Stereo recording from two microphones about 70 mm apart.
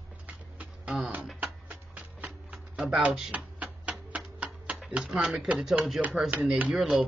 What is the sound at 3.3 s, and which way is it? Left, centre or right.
Music, centre.